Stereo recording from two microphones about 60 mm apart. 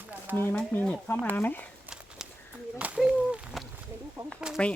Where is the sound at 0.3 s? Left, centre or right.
Right.